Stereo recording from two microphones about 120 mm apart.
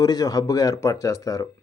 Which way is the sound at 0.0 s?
30° left (ahead or behind).